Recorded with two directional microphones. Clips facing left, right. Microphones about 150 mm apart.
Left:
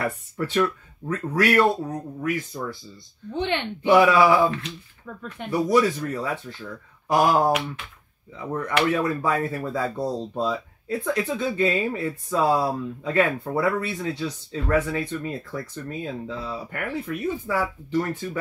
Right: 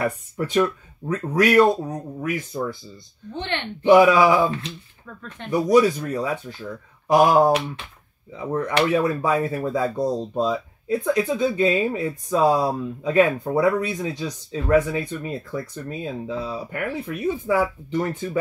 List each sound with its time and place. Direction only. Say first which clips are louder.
0.0 s speech: right 2 dB; 15° right (ahead or behind)
3.3 s speech: left 3 dB; 10° left (ahead or behind)
3.8 s speech: right 3 dB; 15° right (ahead or behind)
5.0 s speech: left 3 dB; 10° left (ahead or behind)
5.5 s speech: right 3 dB; 15° right (ahead or behind)
8.8 s speech: right 2 dB; 20° right (ahead or behind)